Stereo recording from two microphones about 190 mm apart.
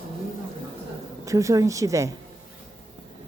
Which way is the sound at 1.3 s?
15° right (ahead or behind).